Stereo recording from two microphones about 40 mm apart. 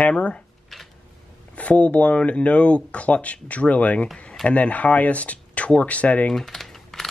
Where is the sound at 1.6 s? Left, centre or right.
Left.